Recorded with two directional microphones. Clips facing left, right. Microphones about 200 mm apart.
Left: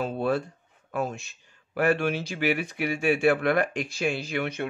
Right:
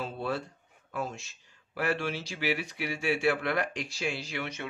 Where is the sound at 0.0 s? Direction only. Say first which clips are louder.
Left 7 dB; 55° left (ahead or behind).